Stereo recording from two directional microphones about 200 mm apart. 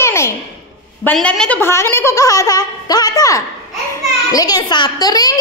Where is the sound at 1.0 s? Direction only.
5° left (ahead or behind).